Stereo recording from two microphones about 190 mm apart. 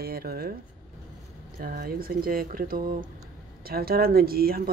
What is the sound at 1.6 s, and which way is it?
Speech, 50° right (ahead or behind).